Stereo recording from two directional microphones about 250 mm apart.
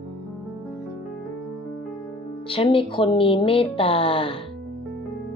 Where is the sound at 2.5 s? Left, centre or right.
Left.